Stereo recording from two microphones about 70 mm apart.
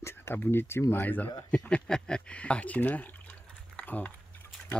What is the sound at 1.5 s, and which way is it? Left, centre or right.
Speech, centre.